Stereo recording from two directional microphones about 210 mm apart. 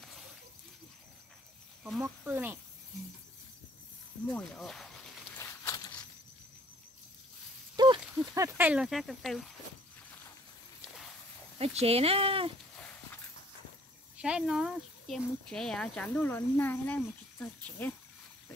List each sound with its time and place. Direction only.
1.8 s speech: 5° right (ahead or behind)
4.3 s speech: 5° left (ahead or behind)
5.3 s a sound: 10° left (ahead or behind)
7.7 s horse: 20° right (ahead or behind)
8.4 s speech: 10° right (ahead or behind)
11.5 s speech: 30° right (ahead or behind)
14.2 s speech: 5° right (ahead or behind)